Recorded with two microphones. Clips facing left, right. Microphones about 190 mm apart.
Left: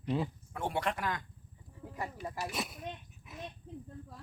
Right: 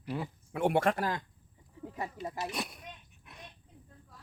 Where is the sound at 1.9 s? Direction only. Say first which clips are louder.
Right 1 dB; 20° right (ahead or behind).